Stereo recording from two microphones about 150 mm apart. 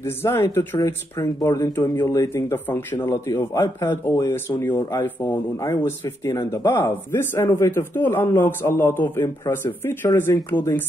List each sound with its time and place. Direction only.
0.0 s speech: 15° left (ahead or behind)